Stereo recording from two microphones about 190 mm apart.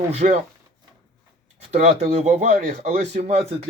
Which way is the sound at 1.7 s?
35° right (ahead or behind).